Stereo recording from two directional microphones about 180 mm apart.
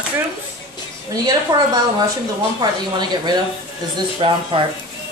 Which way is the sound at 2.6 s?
25° right (ahead or behind).